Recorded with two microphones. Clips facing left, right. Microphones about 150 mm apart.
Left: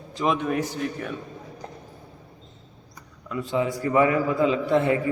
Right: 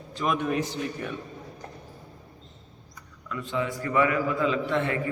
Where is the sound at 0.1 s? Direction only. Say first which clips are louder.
Left 4 dB; 30° left (ahead or behind).